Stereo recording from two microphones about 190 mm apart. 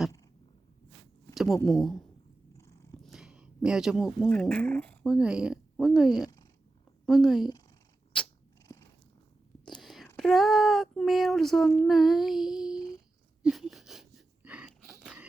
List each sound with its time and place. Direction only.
1.3 s a sound: centre (ahead or behind)
1.6 s speech: centre (ahead or behind)
2.6 s cat: 15° left (ahead or behind)
3.0 s speech: centre (ahead or behind)
5.0 s speech: 5° right (ahead or behind)
6.1 s speech: 20° left (ahead or behind)
7.0 s a woman's voice: centre (ahead or behind)
8.6 s cat: 15° left (ahead or behind)
9.6 s whispering: centre (ahead or behind)
10.2 s speech: centre (ahead or behind)
13.4 s wheeze: centre (ahead or behind)